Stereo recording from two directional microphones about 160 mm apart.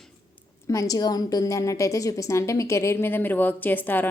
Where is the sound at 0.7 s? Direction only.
20° left (ahead or behind).